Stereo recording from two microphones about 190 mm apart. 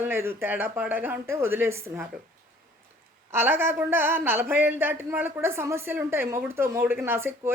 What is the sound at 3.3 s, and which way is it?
A woman's voice, 10° right (ahead or behind).